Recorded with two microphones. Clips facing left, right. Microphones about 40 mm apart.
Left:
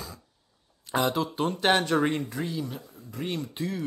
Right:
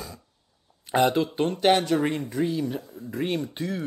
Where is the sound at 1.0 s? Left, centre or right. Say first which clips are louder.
Right 5 dB; centre.